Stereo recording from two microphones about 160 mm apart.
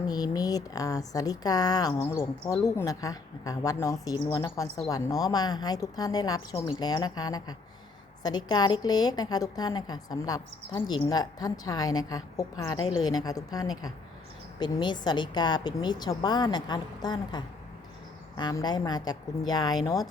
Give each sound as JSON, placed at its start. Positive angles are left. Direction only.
{"t": 0.1, "sound": "a woman's voice", "side_deg": 25}